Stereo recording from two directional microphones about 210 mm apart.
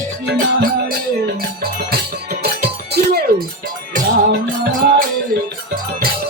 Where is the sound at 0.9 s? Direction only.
45° right (ahead or behind).